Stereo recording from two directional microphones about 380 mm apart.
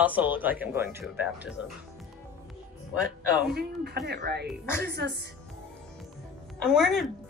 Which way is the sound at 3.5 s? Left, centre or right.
Right.